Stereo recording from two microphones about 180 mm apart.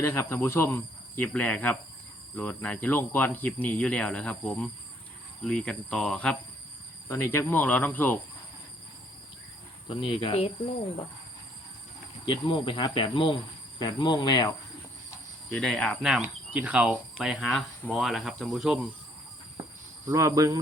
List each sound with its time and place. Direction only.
0.0 s speech: 15° left (ahead or behind)
9.9 s speech: 30° left (ahead or behind)
12.2 s speech: 25° left (ahead or behind)
15.1 s cricket: 10° left (ahead or behind)
17.8 s speech: centre (ahead or behind)
20.1 s speech: 15° right (ahead or behind)